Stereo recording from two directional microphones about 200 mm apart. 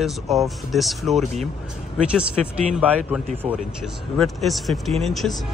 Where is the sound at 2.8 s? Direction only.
10° right (ahead or behind).